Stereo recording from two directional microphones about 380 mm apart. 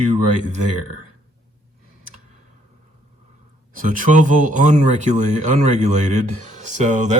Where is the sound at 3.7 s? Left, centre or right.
Right.